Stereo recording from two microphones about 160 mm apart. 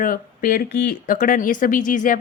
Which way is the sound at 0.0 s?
60° left (ahead or behind).